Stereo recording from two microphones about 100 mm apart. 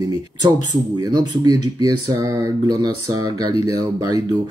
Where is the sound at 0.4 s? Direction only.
45° right (ahead or behind).